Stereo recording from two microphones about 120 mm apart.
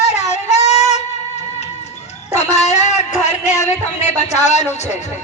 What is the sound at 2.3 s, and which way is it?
Speech, 70° left (ahead or behind).